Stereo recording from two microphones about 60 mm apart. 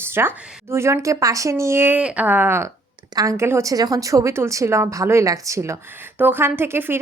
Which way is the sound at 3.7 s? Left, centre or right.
Right.